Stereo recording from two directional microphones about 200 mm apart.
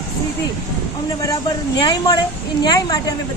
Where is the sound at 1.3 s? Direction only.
20° left (ahead or behind).